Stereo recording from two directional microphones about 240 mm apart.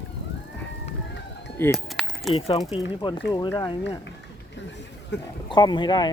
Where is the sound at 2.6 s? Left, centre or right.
Centre.